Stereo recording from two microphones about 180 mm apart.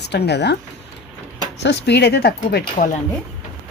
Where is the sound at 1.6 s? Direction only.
70° left (ahead or behind).